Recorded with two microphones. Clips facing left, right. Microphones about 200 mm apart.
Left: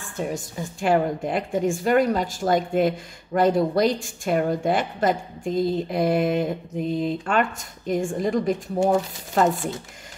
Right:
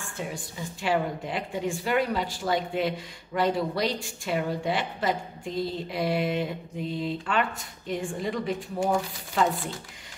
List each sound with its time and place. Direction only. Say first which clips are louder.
0.0 s a woman's voice: left 6 dB; 45° left (ahead or behind)